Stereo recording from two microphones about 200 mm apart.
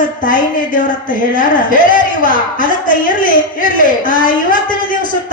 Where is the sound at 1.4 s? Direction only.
45° left (ahead or behind).